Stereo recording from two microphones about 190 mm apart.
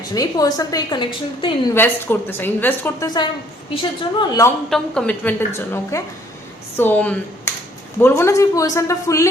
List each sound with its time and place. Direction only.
0.0 s a woman's voice: 20° left (ahead or behind)
1.7 s a woman's voice: 10° left (ahead or behind)
4.7 s a woman's voice: 5° left (ahead or behind)